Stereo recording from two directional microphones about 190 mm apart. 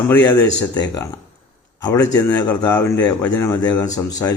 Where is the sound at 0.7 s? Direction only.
20° left (ahead or behind).